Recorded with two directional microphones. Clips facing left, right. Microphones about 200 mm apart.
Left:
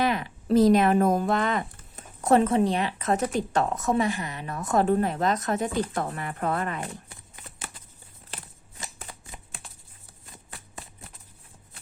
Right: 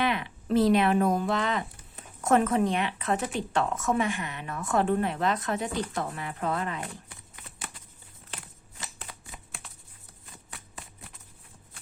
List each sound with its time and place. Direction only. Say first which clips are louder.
0.0 s speech: left 3 dB; 40° left (ahead or behind)